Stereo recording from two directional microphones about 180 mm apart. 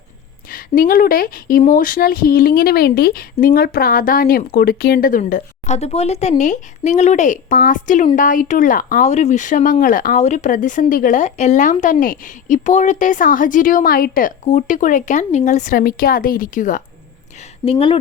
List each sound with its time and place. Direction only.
0.5 s speech: 50° left (ahead or behind)
17.7 s speech: 30° left (ahead or behind)